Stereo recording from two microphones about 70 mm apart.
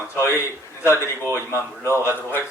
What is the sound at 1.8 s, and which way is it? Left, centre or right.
Speech, left.